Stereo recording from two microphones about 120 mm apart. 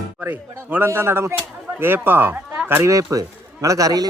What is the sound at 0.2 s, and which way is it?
A man's voice, 15° right (ahead or behind).